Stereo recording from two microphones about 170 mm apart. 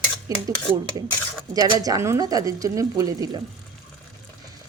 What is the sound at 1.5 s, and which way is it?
Speech, 20° right (ahead or behind).